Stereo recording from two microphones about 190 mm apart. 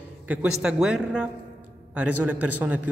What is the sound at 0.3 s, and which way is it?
Speech, 5° right (ahead or behind).